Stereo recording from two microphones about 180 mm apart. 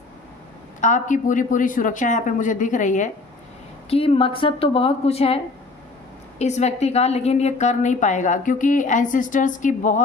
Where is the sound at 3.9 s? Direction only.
30° left (ahead or behind).